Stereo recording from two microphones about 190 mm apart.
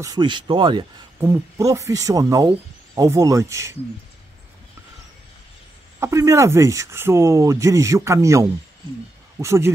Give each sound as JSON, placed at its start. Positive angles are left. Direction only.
{"t": 0.0, "sound": "speech", "side_deg": -20}
{"t": 5.9, "sound": "speech", "side_deg": -15}